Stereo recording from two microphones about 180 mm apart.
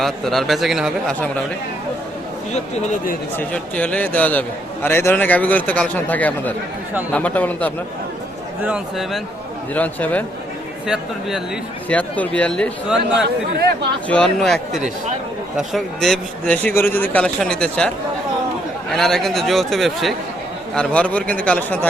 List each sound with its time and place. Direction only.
0.0 s a man's voice: centre (ahead or behind)
2.5 s speech: 40° left (ahead or behind)
3.3 s a man's voice: 5° left (ahead or behind)
8.6 s a man's voice: 5° right (ahead or behind)
9.7 s a man's voice: 10° left (ahead or behind)
10.8 s a man's voice: centre (ahead or behind)
11.9 s a man's voice: 10° left (ahead or behind)